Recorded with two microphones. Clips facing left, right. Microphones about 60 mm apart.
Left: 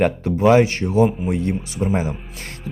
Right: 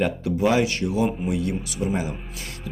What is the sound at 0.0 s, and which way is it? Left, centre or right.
Speech, left.